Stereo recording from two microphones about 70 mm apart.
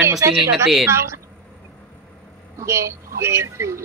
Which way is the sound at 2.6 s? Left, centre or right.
Right.